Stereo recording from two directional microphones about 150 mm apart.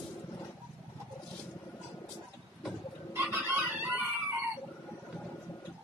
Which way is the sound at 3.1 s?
15° right (ahead or behind).